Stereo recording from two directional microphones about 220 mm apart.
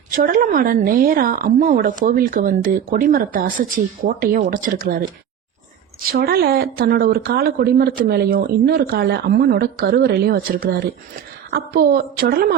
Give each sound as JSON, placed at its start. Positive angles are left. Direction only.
{"t": 0.1, "sound": "speech", "side_deg": -40}